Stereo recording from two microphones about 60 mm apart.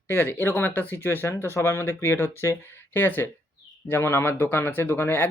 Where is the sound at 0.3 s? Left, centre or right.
Left.